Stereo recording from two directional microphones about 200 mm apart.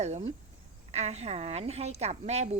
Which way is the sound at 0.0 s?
35° right (ahead or behind).